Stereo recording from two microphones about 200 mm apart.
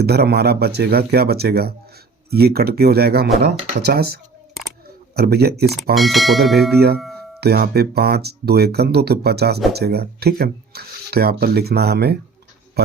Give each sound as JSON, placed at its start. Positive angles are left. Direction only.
{"t": 0.0, "sound": "speech", "side_deg": -55}
{"t": 5.9, "sound": "speech", "side_deg": 0}
{"t": 6.7, "sound": "speech", "side_deg": -50}